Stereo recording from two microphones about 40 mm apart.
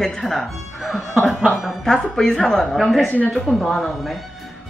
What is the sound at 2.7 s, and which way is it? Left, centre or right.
A woman's voice, centre.